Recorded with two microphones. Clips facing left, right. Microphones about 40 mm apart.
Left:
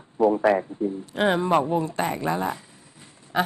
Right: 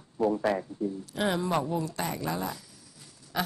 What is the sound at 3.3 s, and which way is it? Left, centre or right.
Quack, left.